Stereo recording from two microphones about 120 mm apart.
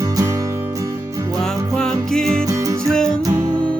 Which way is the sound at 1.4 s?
5° left (ahead or behind).